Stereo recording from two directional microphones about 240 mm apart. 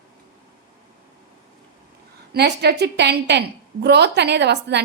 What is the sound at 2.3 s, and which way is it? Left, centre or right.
A woman's voice, right.